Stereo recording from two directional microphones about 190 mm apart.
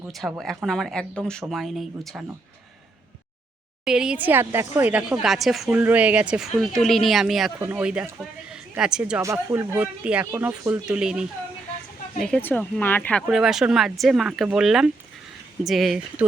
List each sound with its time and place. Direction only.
0.1 s speech: centre (ahead or behind)
3.8 s speech: 5° right (ahead or behind)
9.2 s speech: 15° right (ahead or behind)
12.2 s speech: 5° left (ahead or behind)
13.2 s speech: 5° right (ahead or behind)